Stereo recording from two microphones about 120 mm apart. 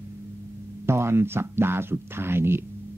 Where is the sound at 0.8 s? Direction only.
20° right (ahead or behind).